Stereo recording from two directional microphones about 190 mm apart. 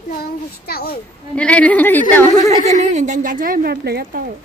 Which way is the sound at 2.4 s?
40° right (ahead or behind).